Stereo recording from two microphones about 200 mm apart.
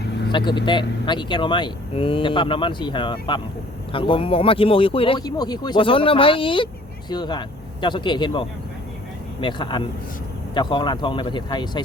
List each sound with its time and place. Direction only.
0.3 s speech: 25° left (ahead or behind)